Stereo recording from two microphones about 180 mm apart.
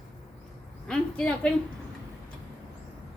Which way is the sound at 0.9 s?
5° left (ahead or behind).